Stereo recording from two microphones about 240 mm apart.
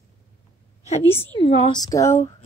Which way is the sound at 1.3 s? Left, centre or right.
Left.